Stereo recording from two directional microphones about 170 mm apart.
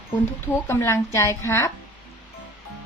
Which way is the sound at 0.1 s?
15° left (ahead or behind).